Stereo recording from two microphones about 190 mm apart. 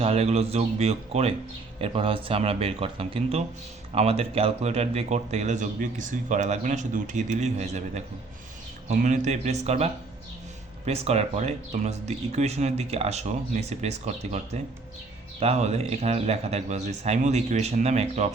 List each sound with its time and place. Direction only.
0.0 s a man's voice: 35° right (ahead or behind)